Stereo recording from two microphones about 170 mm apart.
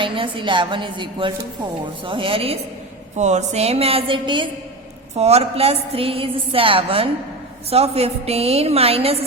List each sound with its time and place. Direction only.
0.0 s a woman's voice: 30° right (ahead or behind)